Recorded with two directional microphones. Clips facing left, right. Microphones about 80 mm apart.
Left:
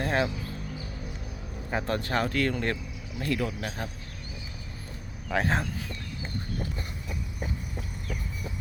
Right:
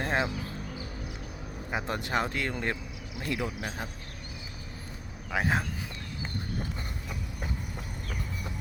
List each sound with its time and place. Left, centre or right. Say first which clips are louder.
0.0 s music: left 2 dB; centre
1.7 s speech: left 2 dB; centre
5.3 s speech: left 2 dB; centre